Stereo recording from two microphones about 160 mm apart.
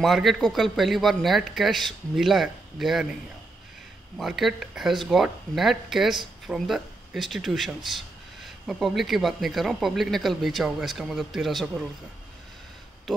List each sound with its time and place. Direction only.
0.0 s speech: centre (ahead or behind)
4.2 s speech: centre (ahead or behind)